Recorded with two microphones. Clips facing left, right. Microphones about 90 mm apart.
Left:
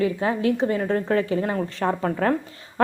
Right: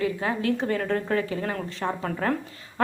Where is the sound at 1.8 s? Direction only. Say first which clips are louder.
Left 5 dB; 40° left (ahead or behind).